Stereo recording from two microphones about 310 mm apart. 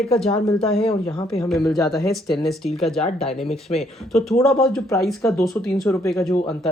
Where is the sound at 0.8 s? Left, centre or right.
Centre.